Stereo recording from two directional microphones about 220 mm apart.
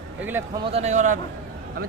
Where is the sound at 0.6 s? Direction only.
30° right (ahead or behind).